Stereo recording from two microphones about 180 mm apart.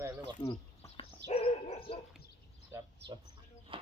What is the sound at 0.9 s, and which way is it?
Dog, 30° left (ahead or behind).